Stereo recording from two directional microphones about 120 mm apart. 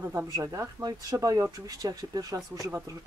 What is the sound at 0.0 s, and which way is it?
Speech, 20° right (ahead or behind).